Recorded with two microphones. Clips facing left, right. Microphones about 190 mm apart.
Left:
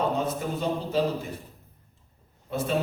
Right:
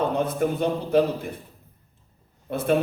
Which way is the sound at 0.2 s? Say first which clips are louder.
Right 5 dB; 60° right (ahead or behind).